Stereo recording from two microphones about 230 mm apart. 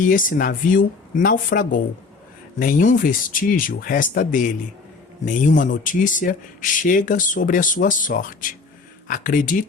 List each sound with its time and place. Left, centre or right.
0.0 s speech: left